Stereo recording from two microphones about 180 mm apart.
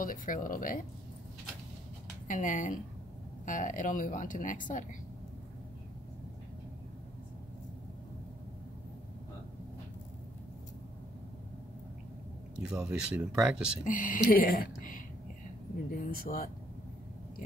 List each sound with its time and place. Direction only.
0.0 s speech: 50° left (ahead or behind)
2.2 s speech: 45° left (ahead or behind)
12.5 s speech: 5° right (ahead or behind)
13.8 s speech: 50° left (ahead or behind)